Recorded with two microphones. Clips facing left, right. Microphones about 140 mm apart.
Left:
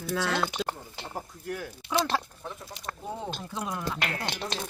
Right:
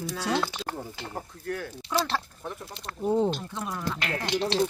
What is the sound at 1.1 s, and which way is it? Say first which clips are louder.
Speech: right 1 dB; 15° left (ahead or behind).